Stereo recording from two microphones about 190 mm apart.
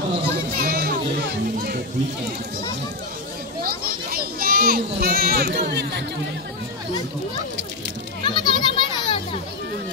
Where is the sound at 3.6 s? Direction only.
50° right (ahead or behind).